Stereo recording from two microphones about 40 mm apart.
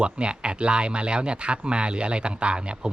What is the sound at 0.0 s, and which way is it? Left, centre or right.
Speech, right.